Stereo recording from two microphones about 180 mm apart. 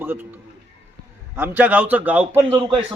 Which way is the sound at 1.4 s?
10° right (ahead or behind).